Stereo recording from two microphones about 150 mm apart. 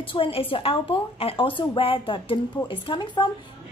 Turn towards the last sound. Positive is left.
turn(degrees=30)  # may be behind; listen again after turning